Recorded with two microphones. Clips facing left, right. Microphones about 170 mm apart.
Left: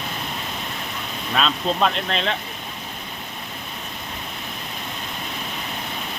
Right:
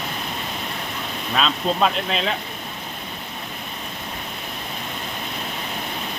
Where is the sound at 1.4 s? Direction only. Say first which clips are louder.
Right 1 dB; centre (ahead or behind).